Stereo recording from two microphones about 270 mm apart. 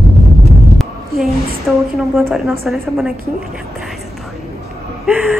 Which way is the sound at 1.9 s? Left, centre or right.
Centre.